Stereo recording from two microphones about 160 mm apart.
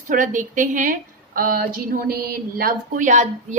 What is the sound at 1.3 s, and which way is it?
A woman's voice, 65° right (ahead or behind).